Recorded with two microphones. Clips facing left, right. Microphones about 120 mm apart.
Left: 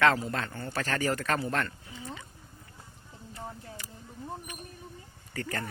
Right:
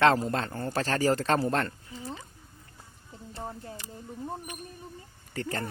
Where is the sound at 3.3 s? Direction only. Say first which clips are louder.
Right 3 dB; 30° right (ahead or behind).